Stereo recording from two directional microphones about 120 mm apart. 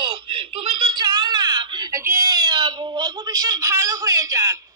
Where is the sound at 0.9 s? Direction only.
40° right (ahead or behind).